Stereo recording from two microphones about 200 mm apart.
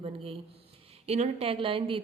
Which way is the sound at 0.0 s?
30° right (ahead or behind).